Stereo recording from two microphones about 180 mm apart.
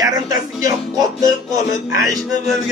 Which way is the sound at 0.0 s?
20° right (ahead or behind).